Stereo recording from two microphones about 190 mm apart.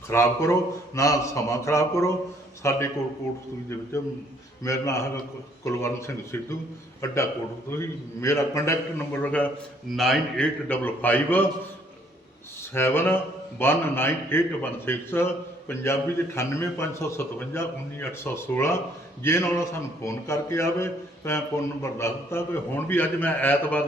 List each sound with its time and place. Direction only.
0.1 s a man's voice: 15° left (ahead or behind)
3.9 s a man's voice: 15° left (ahead or behind)
12.7 s a man's voice: 10° left (ahead or behind)